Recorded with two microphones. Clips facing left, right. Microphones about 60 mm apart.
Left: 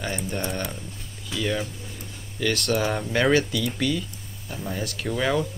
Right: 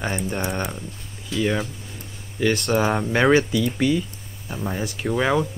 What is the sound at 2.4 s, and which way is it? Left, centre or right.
Speech, right.